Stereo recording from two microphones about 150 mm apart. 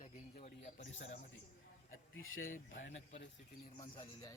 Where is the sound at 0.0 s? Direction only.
50° left (ahead or behind).